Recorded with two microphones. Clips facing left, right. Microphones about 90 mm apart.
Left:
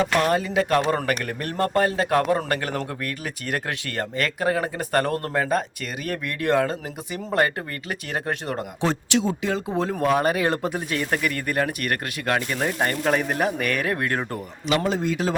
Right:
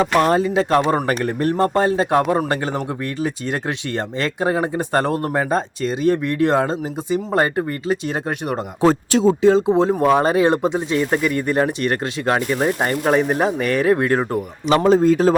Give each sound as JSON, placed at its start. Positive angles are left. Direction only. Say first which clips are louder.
{"t": 0.0, "sound": "speech", "louder": "right 5 dB", "side_deg": -30}
{"t": 8.8, "sound": "speech", "louder": "right 9 dB", "side_deg": -40}
{"t": 14.8, "sound": "a man's voice", "louder": "right 10 dB", "side_deg": -40}